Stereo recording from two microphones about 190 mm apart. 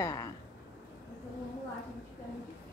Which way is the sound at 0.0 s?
20° left (ahead or behind).